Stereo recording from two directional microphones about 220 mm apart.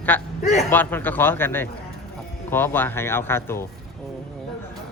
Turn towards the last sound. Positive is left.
turn(degrees=10)  # may be behind; listen again after turning